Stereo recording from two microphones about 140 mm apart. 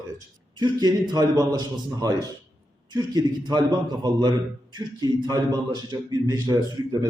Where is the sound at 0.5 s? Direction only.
30° right (ahead or behind).